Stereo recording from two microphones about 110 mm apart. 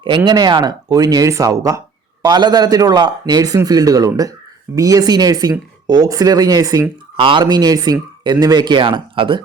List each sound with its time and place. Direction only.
0.3 s a man's voice: 40° right (ahead or behind)
7.2 s a man's voice: 50° right (ahead or behind)